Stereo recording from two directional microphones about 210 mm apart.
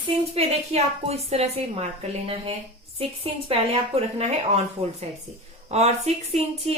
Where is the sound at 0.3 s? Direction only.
30° right (ahead or behind).